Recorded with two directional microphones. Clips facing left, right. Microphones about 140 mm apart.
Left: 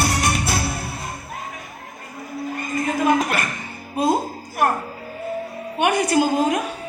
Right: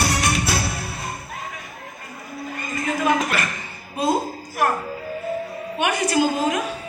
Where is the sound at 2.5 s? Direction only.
45° left (ahead or behind).